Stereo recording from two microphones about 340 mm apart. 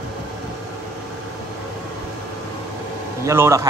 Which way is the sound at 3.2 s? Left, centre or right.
Centre.